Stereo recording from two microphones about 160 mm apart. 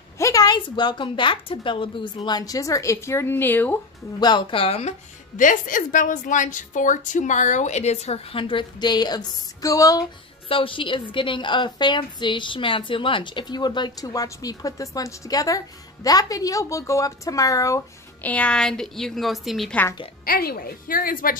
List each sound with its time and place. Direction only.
0.2 s a woman's voice: 25° left (ahead or behind)
4.2 s speech: 25° left (ahead or behind)
5.4 s a woman's voice: 55° left (ahead or behind); by 10.0 s 20° left (ahead or behind)
10.5 s a woman's voice: 35° left (ahead or behind)
18.3 s a woman's voice: 5° left (ahead or behind)
20.2 s a woman's voice: 65° left (ahead or behind)